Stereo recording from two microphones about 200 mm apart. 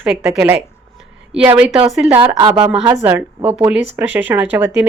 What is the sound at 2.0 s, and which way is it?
Speech, 5° right (ahead or behind).